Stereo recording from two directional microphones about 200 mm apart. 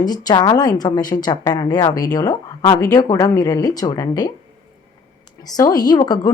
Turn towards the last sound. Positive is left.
turn(degrees=20)  # may be behind; listen again after turning